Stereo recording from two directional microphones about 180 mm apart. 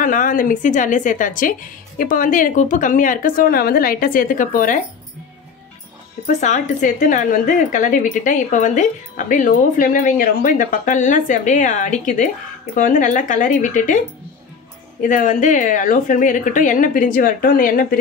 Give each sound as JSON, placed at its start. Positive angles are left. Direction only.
{"t": 0.0, "sound": "speech", "side_deg": 50}
{"t": 6.2, "sound": "speech", "side_deg": 40}
{"t": 15.0, "sound": "speech", "side_deg": 45}